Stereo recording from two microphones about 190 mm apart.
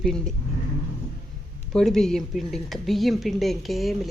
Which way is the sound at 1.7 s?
Centre (ahead or behind).